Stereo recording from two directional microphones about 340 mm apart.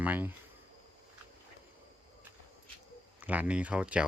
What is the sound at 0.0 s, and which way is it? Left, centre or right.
Speech, centre.